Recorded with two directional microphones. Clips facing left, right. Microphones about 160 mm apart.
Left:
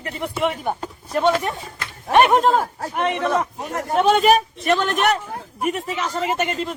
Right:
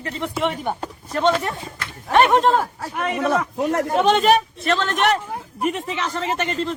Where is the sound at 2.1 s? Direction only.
15° left (ahead or behind).